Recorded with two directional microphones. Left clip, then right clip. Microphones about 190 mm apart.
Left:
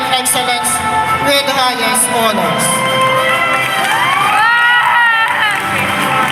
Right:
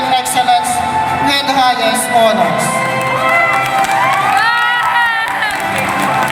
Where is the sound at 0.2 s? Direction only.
5° right (ahead or behind).